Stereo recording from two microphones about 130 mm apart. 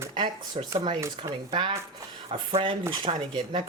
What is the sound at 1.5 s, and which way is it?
Speech, 40° right (ahead or behind).